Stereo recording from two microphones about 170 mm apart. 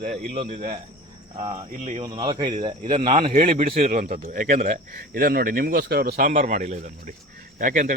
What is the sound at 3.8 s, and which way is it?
A man's voice, 45° right (ahead or behind).